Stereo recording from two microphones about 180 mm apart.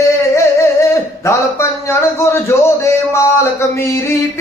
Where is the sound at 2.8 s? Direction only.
15° left (ahead or behind).